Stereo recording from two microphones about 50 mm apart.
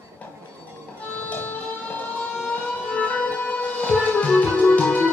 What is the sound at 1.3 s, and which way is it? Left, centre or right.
Music, left.